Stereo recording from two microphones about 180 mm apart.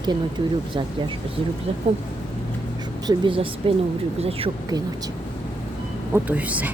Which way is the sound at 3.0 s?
30° right (ahead or behind).